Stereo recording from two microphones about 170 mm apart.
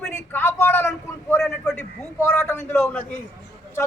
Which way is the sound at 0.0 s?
10° left (ahead or behind).